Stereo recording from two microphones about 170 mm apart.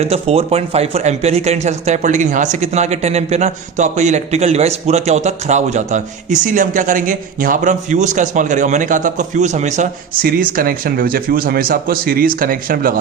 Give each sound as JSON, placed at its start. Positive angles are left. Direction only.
{"t": 0.0, "sound": "speech", "side_deg": -35}